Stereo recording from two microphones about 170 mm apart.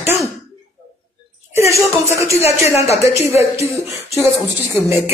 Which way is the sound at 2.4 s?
35° left (ahead or behind).